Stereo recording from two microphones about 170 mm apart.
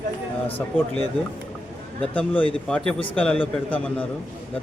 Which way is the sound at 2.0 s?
10° left (ahead or behind).